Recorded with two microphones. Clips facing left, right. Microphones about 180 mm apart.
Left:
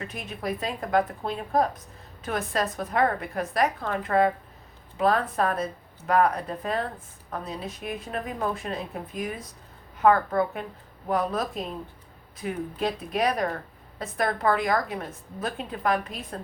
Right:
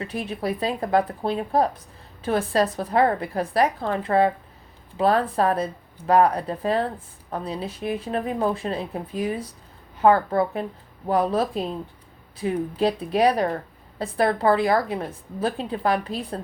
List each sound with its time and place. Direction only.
0.0 s a woman's voice: 30° right (ahead or behind)